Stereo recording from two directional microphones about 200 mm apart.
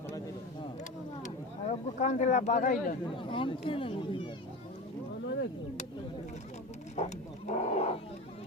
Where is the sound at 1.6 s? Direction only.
35° left (ahead or behind).